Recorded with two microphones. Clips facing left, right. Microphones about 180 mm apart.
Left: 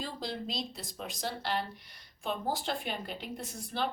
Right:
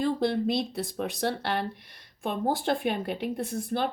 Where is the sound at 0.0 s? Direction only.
60° right (ahead or behind).